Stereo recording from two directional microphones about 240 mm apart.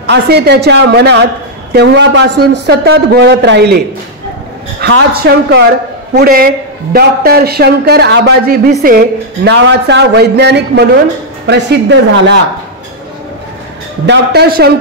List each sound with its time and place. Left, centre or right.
0.1 s a man's voice: right
4.7 s a man's voice: right
14.0 s a man's voice: right